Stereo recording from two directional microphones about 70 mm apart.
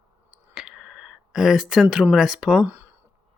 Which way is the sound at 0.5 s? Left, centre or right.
Centre.